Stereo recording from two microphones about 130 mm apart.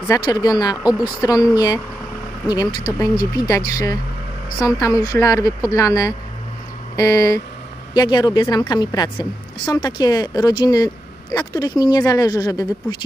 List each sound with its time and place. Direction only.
0.1 s a woman's voice: 30° left (ahead or behind)